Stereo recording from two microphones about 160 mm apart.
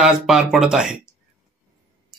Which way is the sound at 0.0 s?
5° right (ahead or behind).